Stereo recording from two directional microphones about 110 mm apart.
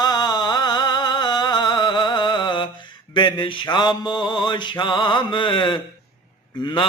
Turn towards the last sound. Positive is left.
turn(degrees=50)  # may be behind; listen again after turning